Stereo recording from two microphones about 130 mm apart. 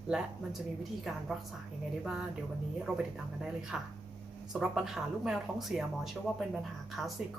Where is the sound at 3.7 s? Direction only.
5° right (ahead or behind).